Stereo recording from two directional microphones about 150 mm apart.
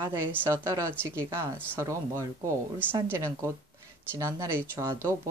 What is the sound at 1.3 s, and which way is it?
Speech, 20° right (ahead or behind).